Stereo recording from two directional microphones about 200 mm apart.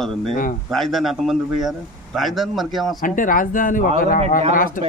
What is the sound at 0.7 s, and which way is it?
A man's voice, centre (ahead or behind).